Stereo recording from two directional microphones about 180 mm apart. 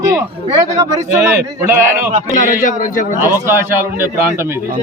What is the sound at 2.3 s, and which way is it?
Speech, 50° left (ahead or behind).